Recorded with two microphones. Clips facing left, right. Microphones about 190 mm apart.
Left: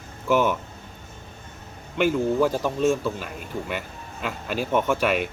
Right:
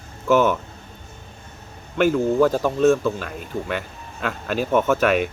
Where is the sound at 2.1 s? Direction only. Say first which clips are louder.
Right 4 dB; 10° left (ahead or behind).